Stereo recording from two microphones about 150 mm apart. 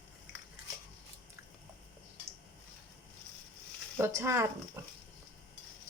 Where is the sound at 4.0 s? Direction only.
20° right (ahead or behind).